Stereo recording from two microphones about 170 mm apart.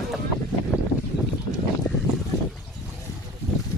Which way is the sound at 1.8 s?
Centre (ahead or behind).